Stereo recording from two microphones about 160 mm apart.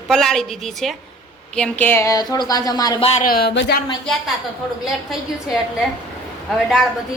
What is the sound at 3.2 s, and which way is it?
Speech, 75° left (ahead or behind).